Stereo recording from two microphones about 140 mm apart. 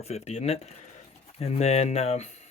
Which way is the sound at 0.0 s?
50° left (ahead or behind).